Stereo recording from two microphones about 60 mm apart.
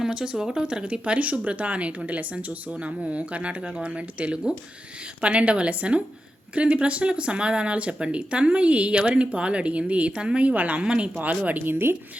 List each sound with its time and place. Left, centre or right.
0.0 s speech: centre; by 11.9 s right